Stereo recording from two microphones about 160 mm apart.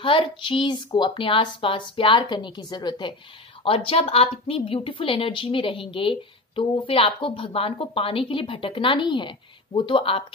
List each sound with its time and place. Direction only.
0.0 s a woman's voice: 30° left (ahead or behind)